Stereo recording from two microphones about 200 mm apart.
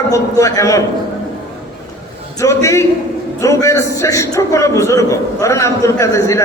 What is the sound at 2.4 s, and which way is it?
A man's voice, 15° left (ahead or behind).